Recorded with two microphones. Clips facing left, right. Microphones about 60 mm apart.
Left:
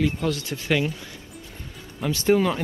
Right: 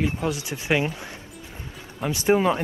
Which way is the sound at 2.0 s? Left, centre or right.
Right.